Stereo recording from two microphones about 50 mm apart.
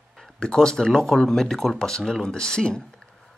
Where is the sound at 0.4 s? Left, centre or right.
Centre.